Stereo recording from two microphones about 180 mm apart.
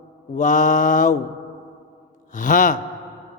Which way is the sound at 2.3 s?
45° left (ahead or behind).